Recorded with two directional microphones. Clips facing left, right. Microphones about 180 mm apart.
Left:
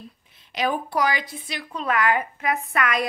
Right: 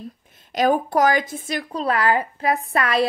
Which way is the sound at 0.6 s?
45° right (ahead or behind).